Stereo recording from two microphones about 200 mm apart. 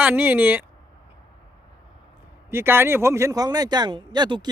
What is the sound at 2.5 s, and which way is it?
Speech, 10° right (ahead or behind).